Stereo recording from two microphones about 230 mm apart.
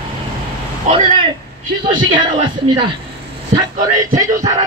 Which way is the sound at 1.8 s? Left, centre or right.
Centre.